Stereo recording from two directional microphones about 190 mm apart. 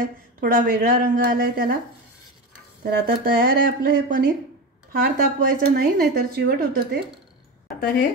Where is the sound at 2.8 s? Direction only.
55° right (ahead or behind).